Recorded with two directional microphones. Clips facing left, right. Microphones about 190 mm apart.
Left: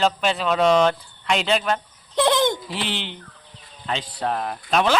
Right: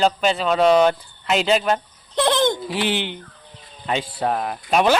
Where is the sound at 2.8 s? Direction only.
55° right (ahead or behind).